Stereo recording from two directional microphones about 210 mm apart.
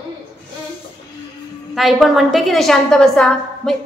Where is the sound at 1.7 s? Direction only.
Centre (ahead or behind).